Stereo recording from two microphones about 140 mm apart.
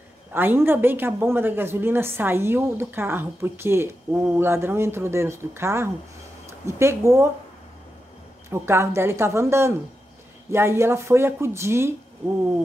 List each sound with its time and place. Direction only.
0.3 s a woman's voice: 15° right (ahead or behind)
8.5 s speech: 20° right (ahead or behind)